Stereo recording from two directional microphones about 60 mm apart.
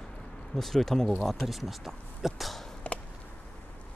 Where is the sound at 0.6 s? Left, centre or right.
Centre.